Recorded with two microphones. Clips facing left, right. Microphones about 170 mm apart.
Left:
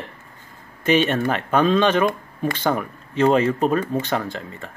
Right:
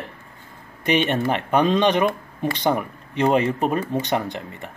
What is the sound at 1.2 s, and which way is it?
Speech, 15° right (ahead or behind).